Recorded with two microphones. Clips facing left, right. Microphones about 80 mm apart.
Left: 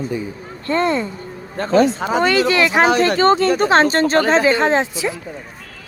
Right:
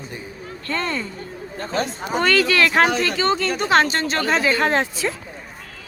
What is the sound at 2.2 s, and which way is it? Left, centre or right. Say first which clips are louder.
Speech: left 2 dB; centre.